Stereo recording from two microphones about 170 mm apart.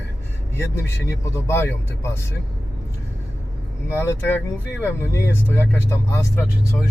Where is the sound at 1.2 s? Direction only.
15° left (ahead or behind).